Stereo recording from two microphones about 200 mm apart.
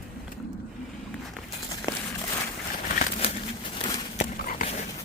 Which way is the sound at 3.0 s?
30° left (ahead or behind).